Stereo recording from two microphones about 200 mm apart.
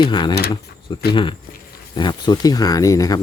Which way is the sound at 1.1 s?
25° left (ahead or behind).